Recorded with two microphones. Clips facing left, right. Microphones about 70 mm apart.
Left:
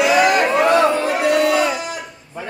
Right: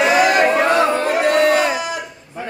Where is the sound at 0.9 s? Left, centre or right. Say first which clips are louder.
Right 1 dB; right.